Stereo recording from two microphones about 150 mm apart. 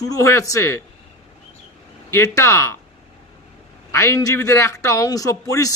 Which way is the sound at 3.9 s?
20° left (ahead or behind).